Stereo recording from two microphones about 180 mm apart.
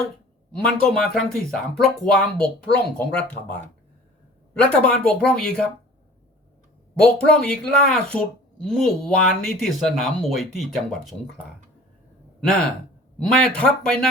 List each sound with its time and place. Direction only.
0.5 s speech: 5° left (ahead or behind)
4.5 s speech: 5° left (ahead or behind)
7.4 s speech: 5° left (ahead or behind)